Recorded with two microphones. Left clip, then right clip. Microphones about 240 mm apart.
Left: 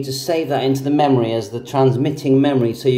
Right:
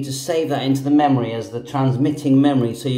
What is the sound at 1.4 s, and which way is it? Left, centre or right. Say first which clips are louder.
Speech: left 5 dB; left.